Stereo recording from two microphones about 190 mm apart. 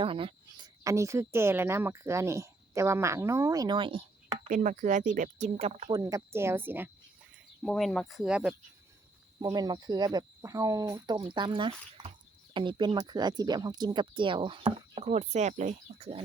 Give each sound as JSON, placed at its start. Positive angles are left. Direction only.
{"t": 0.0, "sound": "speech", "side_deg": -30}
{"t": 4.4, "sound": "speech", "side_deg": -40}
{"t": 5.9, "sound": "speech", "side_deg": -15}
{"t": 7.6, "sound": "speech", "side_deg": 0}
{"t": 9.4, "sound": "speech", "side_deg": -20}